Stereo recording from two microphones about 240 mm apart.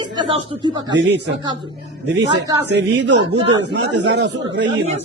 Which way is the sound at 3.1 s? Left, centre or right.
Right.